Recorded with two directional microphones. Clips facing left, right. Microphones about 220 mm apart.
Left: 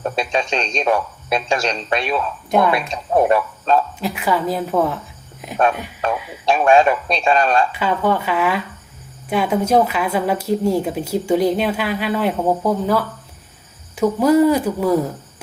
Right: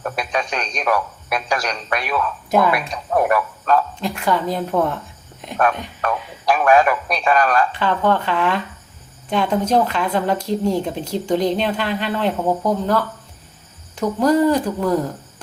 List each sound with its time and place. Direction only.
0.0 s speech: 25° left (ahead or behind)
4.0 s a woman's voice: 5° left (ahead or behind)
6.4 s speech: 25° left (ahead or behind)
7.7 s a woman's voice: 10° left (ahead or behind)